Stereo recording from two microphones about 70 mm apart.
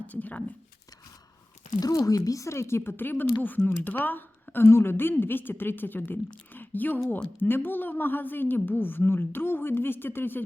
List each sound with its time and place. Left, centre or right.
0.1 s speech: left
1.8 s speech: left